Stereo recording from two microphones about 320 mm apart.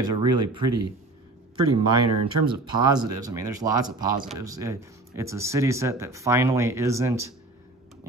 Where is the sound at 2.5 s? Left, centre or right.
Centre.